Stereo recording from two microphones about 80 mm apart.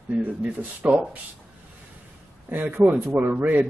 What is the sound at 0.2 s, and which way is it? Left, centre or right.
Speech, centre.